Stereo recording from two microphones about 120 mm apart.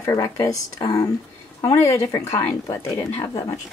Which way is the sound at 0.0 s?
30° left (ahead or behind).